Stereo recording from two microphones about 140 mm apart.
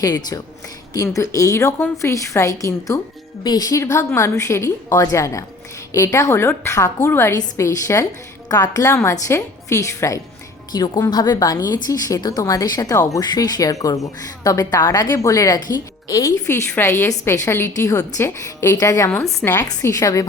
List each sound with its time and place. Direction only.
0.0 s a woman's voice: 30° left (ahead or behind)
19.4 s a woman's voice: 5° left (ahead or behind)
19.8 s a woman's voice: 25° left (ahead or behind)